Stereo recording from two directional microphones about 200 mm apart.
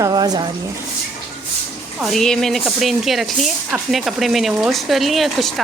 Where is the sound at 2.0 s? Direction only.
Centre (ahead or behind).